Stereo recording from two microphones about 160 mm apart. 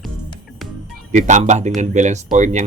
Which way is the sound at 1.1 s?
50° right (ahead or behind).